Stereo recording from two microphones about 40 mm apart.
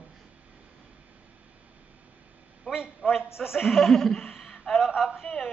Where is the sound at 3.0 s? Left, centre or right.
Right.